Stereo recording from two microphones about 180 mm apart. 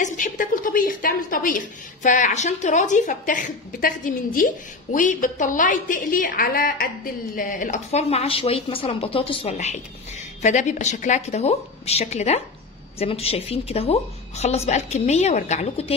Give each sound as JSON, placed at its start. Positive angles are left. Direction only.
{"t": 0.0, "sound": "a woman's voice", "side_deg": 45}